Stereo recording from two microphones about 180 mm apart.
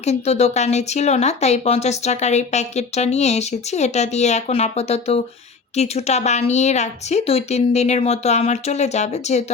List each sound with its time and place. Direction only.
0.0 s speech: 35° left (ahead or behind)